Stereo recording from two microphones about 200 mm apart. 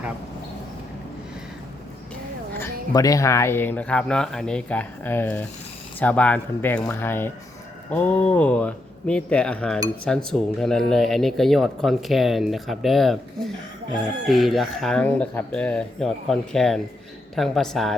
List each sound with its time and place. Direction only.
2.6 s speech: 15° left (ahead or behind); by 17.9 s centre (ahead or behind)